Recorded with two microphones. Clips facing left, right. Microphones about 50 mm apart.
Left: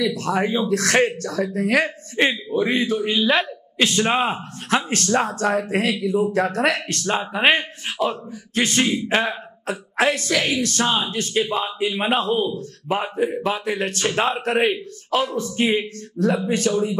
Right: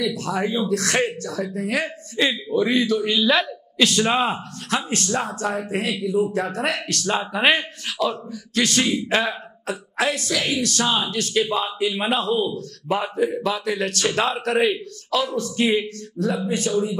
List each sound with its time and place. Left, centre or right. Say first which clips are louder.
0.0 s speech: left 2 dB; left
4.6 s speech: left 3 dB; left
6.9 s speech: even; left
12.5 s speech: even; left
16.4 s speech: left 2 dB; left